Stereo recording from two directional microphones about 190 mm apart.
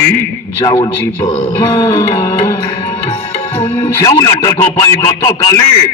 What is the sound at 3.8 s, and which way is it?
Speech, 15° left (ahead or behind).